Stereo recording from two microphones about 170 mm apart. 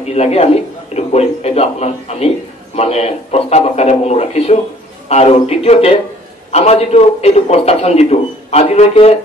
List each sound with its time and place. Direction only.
0.0 s a man's voice: 40° left (ahead or behind)